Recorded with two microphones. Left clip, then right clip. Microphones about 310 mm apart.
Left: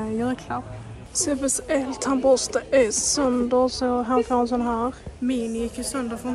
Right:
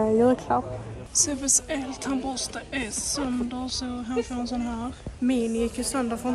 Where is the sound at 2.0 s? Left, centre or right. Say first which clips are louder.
Left 11 dB; centre.